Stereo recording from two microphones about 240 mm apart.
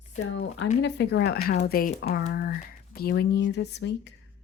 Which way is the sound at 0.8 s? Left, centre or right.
Left.